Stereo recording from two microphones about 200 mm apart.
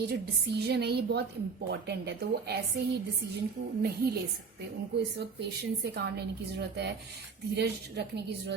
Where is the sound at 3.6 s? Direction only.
40° right (ahead or behind).